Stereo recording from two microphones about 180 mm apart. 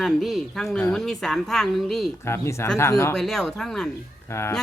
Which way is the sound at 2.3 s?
15° left (ahead or behind).